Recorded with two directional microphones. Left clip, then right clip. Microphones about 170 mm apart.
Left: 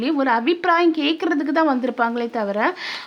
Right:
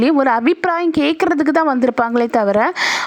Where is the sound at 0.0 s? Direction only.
45° right (ahead or behind).